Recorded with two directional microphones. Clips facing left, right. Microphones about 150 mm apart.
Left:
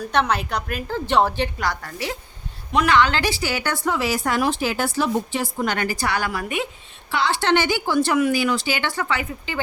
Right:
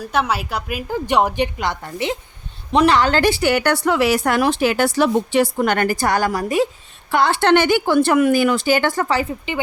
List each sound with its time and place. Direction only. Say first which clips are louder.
0.0 s a woman's voice: right 1 dB; 5° right (ahead or behind); by 2.1 s 20° right (ahead or behind)
2.7 s a woman's voice: right 4 dB; 35° right (ahead or behind)
7.1 s speech: right 5 dB; 55° right (ahead or behind)